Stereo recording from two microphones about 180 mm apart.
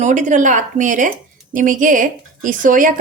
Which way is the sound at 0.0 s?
45° right (ahead or behind).